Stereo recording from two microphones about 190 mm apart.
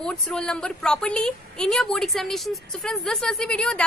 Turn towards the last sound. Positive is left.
turn(degrees=5)  # may be behind; listen again after turning